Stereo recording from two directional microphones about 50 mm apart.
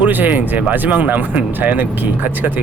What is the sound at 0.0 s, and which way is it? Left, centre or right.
Speech, right.